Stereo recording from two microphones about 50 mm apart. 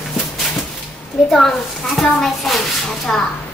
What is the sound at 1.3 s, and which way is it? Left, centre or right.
A child's voice, centre.